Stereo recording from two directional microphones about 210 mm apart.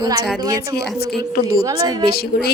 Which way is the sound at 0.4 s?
20° right (ahead or behind).